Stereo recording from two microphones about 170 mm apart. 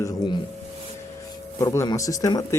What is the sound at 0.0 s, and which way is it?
Speech, 20° left (ahead or behind).